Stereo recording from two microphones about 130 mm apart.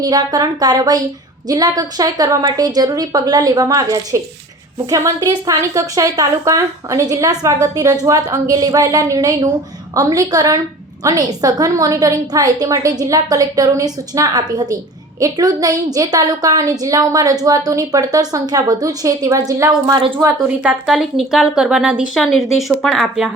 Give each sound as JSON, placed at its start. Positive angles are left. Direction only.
{"t": 0.0, "sound": "a woman's voice", "side_deg": -30}
{"t": 20.2, "sound": "a woman's voice", "side_deg": -15}
{"t": 20.8, "sound": "a woman's voice", "side_deg": 0}